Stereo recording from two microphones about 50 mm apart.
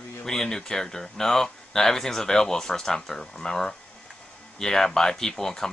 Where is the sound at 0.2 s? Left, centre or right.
Centre.